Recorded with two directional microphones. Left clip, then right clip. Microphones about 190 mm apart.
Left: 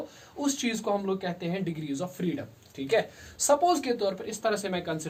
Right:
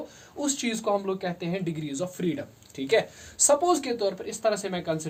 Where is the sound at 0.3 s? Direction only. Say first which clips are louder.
Right 1 dB; 35° right (ahead or behind).